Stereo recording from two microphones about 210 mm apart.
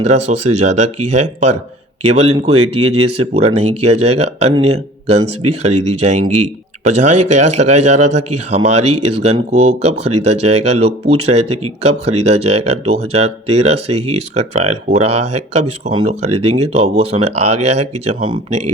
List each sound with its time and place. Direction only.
0.0 s speech: 30° right (ahead or behind)